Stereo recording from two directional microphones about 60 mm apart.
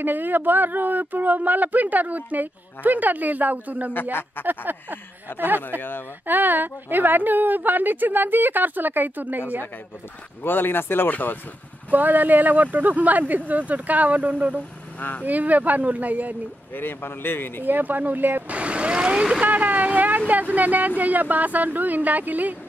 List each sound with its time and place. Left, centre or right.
0.0 s speech: right
3.9 s speech: left
4.5 s speech: right
5.3 s speech: left
6.2 s speech: right
10.4 s speech: left
11.9 s speech: right
15.0 s speech: left
15.2 s speech: right
16.7 s speech: left
17.6 s speech: right
18.6 s speech: centre